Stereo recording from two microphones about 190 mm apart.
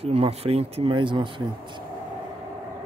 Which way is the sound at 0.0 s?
30° right (ahead or behind).